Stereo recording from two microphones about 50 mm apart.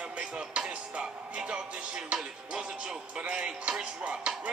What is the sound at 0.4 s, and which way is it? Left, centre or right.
A man's voice, centre.